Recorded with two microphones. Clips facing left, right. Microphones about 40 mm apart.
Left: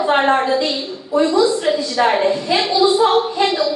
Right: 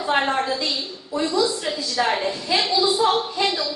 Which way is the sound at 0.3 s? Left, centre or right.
Left.